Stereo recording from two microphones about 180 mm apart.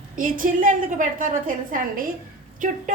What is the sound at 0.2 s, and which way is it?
A woman's voice, 50° right (ahead or behind).